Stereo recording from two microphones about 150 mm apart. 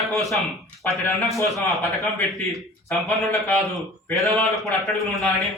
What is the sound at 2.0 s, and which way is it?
A man's voice, centre (ahead or behind).